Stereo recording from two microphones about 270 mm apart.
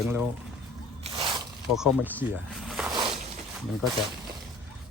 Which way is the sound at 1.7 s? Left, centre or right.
Centre.